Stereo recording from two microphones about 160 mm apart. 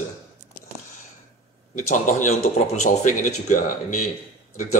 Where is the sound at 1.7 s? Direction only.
50° left (ahead or behind).